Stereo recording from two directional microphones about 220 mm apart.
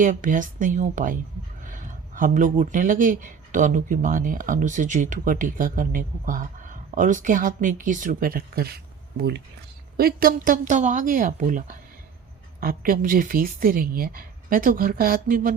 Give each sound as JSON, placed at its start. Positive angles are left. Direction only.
{"t": 0.0, "sound": "speech", "side_deg": -35}